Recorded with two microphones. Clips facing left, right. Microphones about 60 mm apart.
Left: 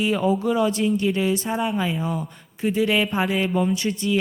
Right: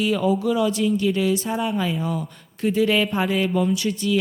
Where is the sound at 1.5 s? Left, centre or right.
Centre.